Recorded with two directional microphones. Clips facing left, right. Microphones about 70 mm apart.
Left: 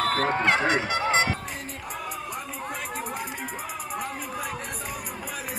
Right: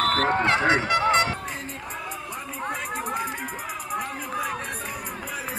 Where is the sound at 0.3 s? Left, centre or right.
Right.